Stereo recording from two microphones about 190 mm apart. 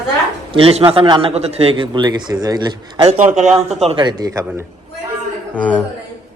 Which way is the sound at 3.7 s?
35° right (ahead or behind).